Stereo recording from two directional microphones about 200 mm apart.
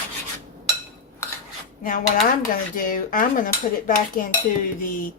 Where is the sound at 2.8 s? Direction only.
45° left (ahead or behind).